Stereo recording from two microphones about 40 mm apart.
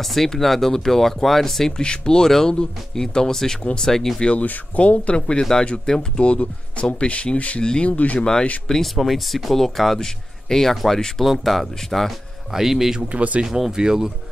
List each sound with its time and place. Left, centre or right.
0.0 s speech: centre
1.8 s speech: left
4.2 s speech: left
5.4 s speech: centre; by 8.2 s left
8.6 s speech: centre
8.9 s speech: centre
11.2 s speech: centre
12.5 s speech: centre
13.1 s speech: right
13.5 s speech: centre